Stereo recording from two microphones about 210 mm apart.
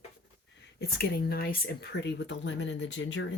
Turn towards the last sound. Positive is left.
turn(degrees=60)  # may be behind; listen again after turning